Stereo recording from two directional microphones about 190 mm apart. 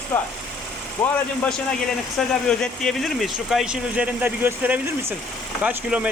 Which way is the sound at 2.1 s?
5° left (ahead or behind).